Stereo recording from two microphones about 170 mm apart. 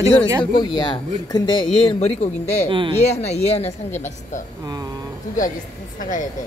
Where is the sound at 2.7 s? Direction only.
30° right (ahead or behind).